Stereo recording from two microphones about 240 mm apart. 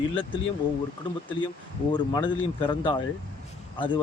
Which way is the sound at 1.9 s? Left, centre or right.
Centre.